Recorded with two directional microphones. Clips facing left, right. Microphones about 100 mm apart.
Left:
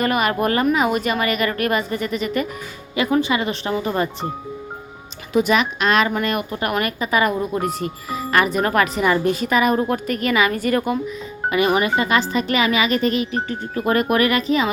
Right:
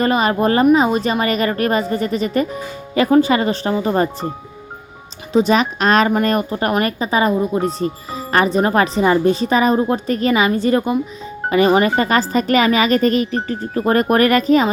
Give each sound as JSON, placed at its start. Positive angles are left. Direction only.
{"t": 0.0, "sound": "speech", "side_deg": -30}
{"t": 5.3, "sound": "speech", "side_deg": -30}